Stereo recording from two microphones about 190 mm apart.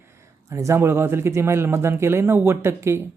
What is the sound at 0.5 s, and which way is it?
Speech, 15° right (ahead or behind).